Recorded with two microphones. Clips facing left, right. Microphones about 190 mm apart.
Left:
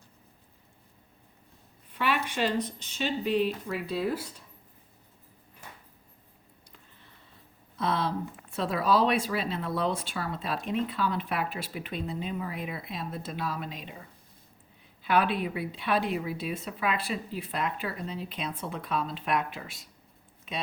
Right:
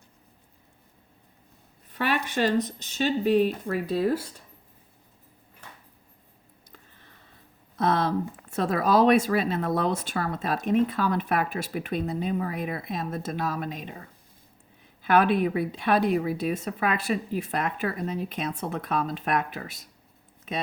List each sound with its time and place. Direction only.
1.9 s speech: 45° right (ahead or behind)
7.8 s speech: 45° right (ahead or behind)
15.0 s speech: 45° right (ahead or behind)